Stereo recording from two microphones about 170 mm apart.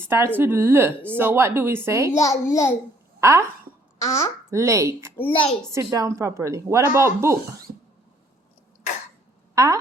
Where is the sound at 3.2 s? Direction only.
15° right (ahead or behind).